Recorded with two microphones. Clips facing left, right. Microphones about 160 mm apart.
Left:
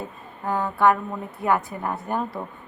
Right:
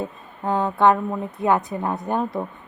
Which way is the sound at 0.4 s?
20° right (ahead or behind).